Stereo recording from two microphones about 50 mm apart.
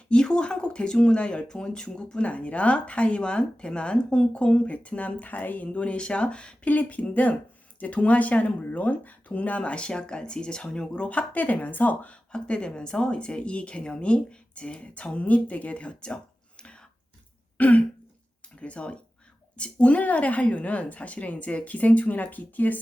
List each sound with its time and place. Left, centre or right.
0.1 s speech: centre; by 5.6 s left
5.6 s speech: left
12.3 s speech: centre
17.6 s speech: left